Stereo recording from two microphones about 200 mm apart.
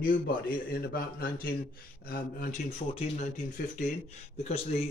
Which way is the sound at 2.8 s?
30° left (ahead or behind).